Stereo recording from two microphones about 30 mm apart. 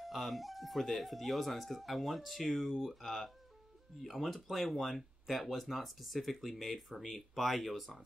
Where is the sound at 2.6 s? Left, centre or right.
Centre.